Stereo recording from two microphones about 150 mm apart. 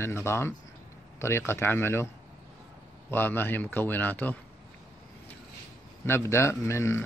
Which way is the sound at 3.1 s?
15° left (ahead or behind).